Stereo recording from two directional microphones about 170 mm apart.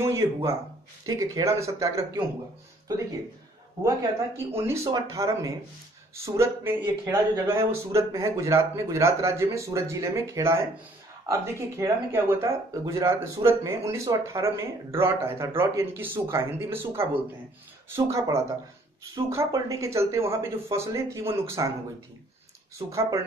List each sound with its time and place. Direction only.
0.0 s speech: 15° right (ahead or behind)
4.6 s speech: 15° right (ahead or behind)
22.8 s speech: 15° right (ahead or behind)